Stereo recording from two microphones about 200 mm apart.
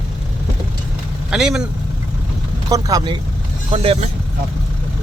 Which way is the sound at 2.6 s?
20° right (ahead or behind).